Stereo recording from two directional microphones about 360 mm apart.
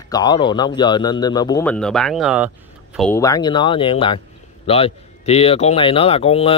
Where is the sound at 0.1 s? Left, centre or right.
Centre.